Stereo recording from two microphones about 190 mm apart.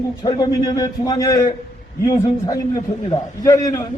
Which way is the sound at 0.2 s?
20° left (ahead or behind).